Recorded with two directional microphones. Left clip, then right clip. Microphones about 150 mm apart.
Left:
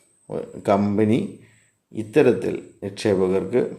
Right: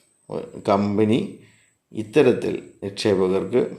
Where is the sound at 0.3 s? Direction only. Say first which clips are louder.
Even; 15° left (ahead or behind).